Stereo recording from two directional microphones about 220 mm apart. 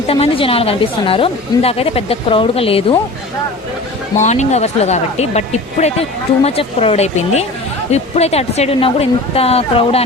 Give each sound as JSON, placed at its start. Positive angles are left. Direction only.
{"t": 0.1, "sound": "speech", "side_deg": 25}
{"t": 4.2, "sound": "speech", "side_deg": 30}